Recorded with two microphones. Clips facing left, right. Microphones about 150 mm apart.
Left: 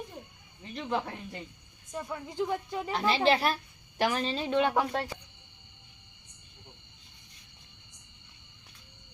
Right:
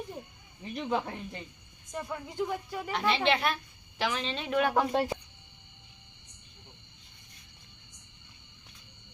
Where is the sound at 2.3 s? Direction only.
15° left (ahead or behind).